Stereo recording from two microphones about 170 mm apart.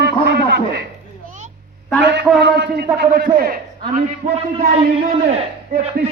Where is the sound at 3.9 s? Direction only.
45° right (ahead or behind).